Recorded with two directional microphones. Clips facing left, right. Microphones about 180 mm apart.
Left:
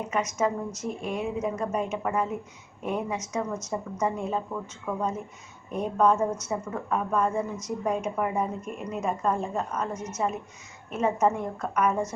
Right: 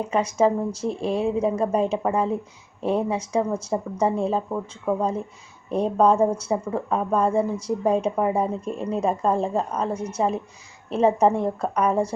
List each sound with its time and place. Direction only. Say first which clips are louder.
0.1 s speech: right 7 dB; 30° right (ahead or behind)